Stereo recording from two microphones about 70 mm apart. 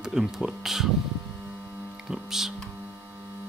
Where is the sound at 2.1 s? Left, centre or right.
Centre.